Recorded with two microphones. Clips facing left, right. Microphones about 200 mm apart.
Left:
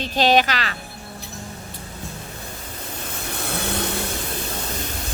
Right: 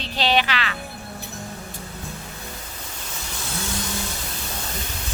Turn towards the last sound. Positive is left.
turn(degrees=60)  # may be behind; listen again after turning